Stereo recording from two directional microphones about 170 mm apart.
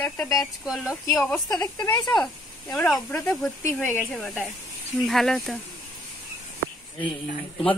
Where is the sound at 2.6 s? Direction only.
5° left (ahead or behind).